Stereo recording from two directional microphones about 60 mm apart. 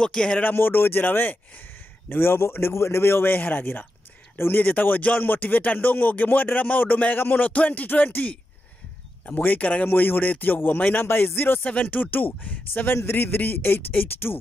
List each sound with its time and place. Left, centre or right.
0.0 s speech: centre
0.4 s speech: left
4.6 s speech: left
11.6 s speech: left
12.9 s speech: left